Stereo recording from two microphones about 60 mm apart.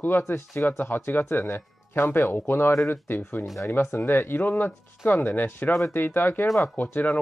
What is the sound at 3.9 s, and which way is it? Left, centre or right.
Speech, left.